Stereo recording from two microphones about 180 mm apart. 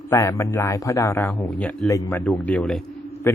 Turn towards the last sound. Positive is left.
turn(degrees=15)  # may be behind; listen again after turning